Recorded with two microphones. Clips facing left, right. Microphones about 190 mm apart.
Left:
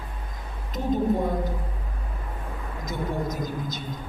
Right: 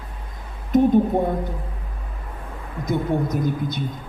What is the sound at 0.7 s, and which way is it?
Speech, 55° right (ahead or behind).